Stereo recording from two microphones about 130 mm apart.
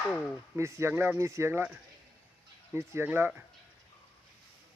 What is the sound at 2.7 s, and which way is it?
Speech, 20° right (ahead or behind).